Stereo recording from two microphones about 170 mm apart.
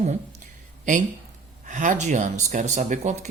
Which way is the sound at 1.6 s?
50° right (ahead or behind).